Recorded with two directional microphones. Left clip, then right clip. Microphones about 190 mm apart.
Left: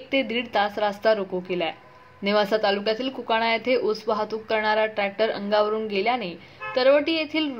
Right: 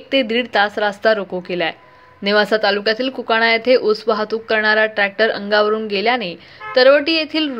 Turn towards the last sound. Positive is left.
turn(degrees=-20)  # may be behind; listen again after turning